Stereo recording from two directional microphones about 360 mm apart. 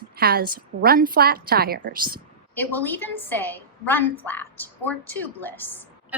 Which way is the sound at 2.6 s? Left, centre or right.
Centre.